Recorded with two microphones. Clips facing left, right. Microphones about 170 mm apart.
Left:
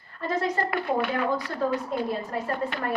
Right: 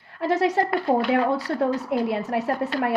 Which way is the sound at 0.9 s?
40° right (ahead or behind).